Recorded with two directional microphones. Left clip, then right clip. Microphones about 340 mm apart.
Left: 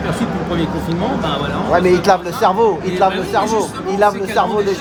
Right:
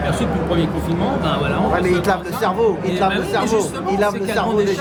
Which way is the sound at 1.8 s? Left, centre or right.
Centre.